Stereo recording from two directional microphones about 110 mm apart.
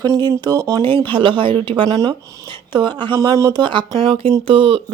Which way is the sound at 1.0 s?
50° right (ahead or behind).